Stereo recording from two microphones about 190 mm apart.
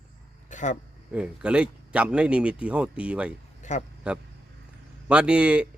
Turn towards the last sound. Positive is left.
turn(degrees=-5)  # may be behind; listen again after turning